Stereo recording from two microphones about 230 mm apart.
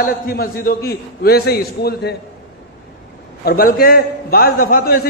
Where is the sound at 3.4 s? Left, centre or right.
Left.